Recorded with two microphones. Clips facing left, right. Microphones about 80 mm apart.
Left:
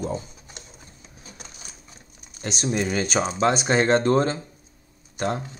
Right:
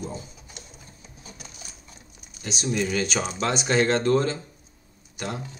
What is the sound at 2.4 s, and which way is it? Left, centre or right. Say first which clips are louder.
Speech: left 3 dB; left.